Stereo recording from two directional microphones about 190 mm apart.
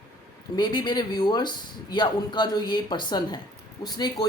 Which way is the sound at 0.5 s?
25° left (ahead or behind).